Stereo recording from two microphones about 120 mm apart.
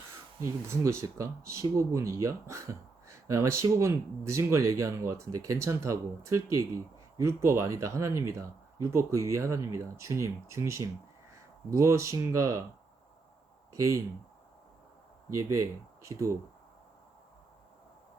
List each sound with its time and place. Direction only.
0.4 s speech: 25° right (ahead or behind)
15.3 s speech: 25° right (ahead or behind)